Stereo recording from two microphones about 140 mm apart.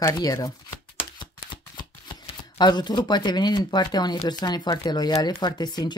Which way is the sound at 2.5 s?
30° left (ahead or behind).